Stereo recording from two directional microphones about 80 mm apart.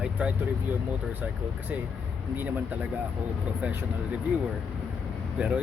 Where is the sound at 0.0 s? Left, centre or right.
Centre.